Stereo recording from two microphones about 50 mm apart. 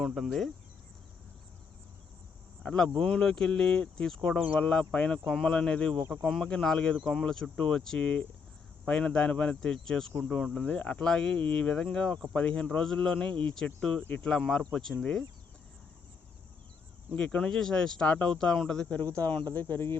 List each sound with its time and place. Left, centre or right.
0.0 s speech: centre
2.6 s speech: centre
5.2 s speech: centre
5.5 s speech: centre
6.0 s speech: centre
17.2 s speech: centre
18.5 s speech: centre
18.9 s speech: left
19.5 s speech: left